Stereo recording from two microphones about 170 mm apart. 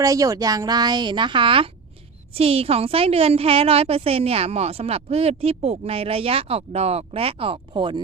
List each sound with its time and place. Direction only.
0.0 s a woman's voice: 20° right (ahead or behind)